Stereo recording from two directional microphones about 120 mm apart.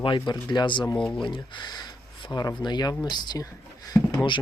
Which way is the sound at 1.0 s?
5° left (ahead or behind).